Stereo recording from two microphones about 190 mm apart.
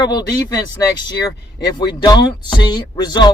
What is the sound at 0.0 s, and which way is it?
Speech, 20° left (ahead or behind).